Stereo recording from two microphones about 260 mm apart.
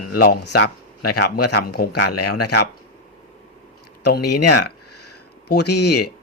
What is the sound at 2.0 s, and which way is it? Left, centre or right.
Speech, left.